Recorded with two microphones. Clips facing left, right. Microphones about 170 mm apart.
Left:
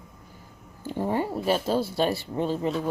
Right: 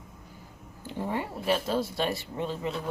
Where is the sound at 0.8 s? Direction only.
40° left (ahead or behind).